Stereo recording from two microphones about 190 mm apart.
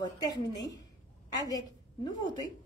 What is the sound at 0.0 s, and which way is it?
Speech, 20° left (ahead or behind).